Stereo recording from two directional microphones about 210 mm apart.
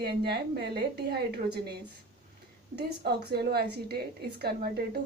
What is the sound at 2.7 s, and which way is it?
A woman's voice, 50° right (ahead or behind).